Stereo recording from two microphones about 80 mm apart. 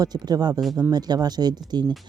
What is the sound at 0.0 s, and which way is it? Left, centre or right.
Speech, right.